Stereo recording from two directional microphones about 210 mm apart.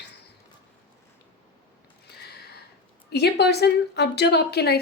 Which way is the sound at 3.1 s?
50° left (ahead or behind).